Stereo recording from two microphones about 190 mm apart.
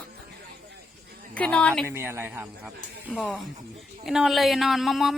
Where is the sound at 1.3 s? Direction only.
5° left (ahead or behind).